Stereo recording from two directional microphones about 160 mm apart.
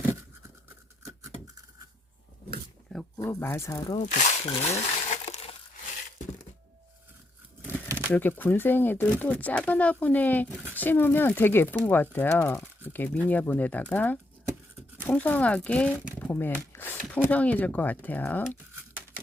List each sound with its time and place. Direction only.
3.2 s speech: 15° left (ahead or behind)
3.9 s speech: 50° left (ahead or behind)
5.3 s a sound: 40° left (ahead or behind)
8.1 s speech: 10° left (ahead or behind)